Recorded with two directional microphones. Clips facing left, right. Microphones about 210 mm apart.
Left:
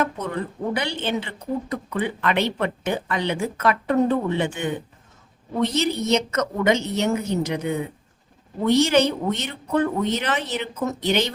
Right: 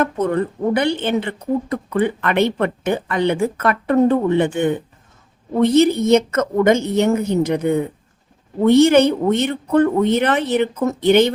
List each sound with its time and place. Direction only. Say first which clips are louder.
0.0 s speech: right 7 dB; 55° right (ahead or behind)